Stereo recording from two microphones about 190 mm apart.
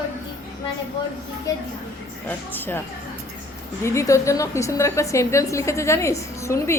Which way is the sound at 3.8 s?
15° left (ahead or behind).